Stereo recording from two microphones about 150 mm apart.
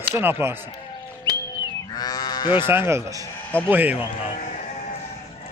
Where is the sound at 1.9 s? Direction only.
25° left (ahead or behind).